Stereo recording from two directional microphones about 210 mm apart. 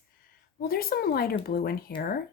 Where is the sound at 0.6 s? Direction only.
45° left (ahead or behind).